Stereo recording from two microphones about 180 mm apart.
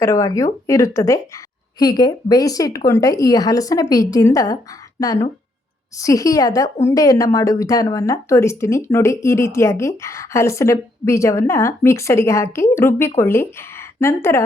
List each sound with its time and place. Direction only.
0.0 s speech: 15° left (ahead or behind)